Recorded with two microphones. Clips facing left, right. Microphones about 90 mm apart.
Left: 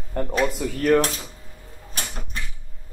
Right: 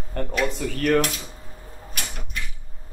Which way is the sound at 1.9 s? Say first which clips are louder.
Left 1 dB; 35° left (ahead or behind).